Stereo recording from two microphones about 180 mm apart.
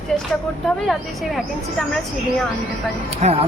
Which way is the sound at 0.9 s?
Centre (ahead or behind).